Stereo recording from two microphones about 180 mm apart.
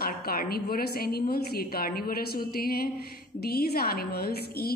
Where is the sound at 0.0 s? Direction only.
55° left (ahead or behind).